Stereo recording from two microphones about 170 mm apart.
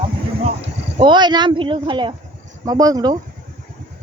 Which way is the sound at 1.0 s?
25° right (ahead or behind).